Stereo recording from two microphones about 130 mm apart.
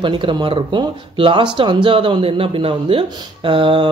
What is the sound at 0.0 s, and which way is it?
Speech, 35° right (ahead or behind).